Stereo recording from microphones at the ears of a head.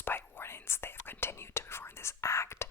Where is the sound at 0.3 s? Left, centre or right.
Left.